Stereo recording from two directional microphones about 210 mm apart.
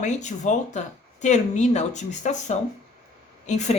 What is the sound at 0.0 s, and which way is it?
A woman's voice, 35° left (ahead or behind).